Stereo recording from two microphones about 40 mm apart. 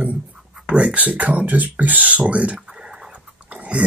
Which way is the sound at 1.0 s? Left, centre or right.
Right.